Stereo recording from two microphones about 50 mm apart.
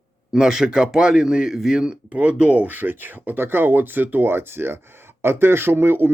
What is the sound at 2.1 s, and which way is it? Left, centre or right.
A man's voice, right.